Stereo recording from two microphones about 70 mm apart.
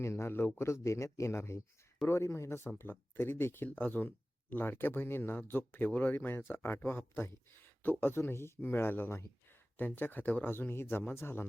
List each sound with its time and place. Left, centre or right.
0.0 s speech: left
0.6 s speech: left
2.6 s speech: left